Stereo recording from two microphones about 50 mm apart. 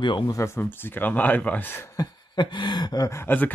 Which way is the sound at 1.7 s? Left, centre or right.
Left.